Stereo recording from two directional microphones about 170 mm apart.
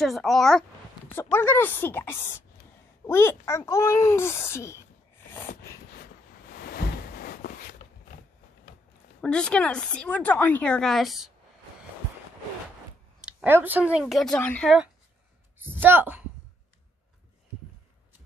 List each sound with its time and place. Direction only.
0.0 s speech: centre (ahead or behind)
1.1 s a child's voice: 15° left (ahead or behind)
6.5 s a sound: 65° left (ahead or behind)
9.2 s speech: 5° left (ahead or behind)
13.2 s speech: 10° right (ahead or behind); by 14.8 s 5° left (ahead or behind)
15.6 s speech: 10° right (ahead or behind)